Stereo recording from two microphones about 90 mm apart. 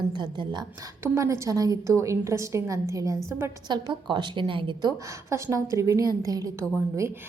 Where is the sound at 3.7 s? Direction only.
55° right (ahead or behind); by 4.8 s 70° right (ahead or behind).